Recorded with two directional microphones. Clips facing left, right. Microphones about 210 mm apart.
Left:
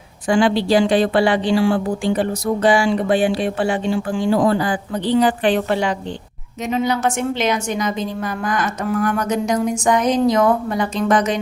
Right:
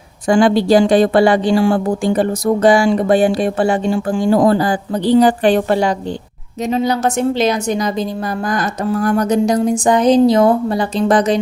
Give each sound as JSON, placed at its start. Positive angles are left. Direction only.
{"t": 0.3, "sound": "a woman's voice", "side_deg": -45}